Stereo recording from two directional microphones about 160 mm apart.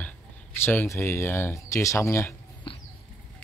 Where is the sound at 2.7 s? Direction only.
30° left (ahead or behind).